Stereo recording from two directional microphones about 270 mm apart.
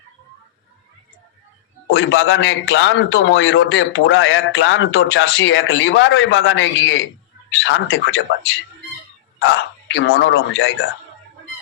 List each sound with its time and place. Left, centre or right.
1.9 s a man's voice: left
9.9 s a man's voice: left